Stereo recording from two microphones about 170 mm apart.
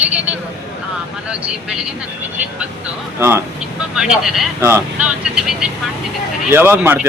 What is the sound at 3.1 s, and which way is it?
A man's voice, 15° right (ahead or behind).